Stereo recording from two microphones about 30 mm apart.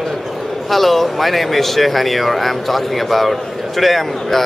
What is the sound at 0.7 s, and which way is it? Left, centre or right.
Speech, centre.